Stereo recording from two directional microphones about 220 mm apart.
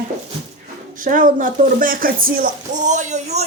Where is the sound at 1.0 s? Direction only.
40° right (ahead or behind).